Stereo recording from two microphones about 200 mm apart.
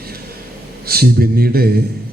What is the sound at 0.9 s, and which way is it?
Speech, 50° right (ahead or behind).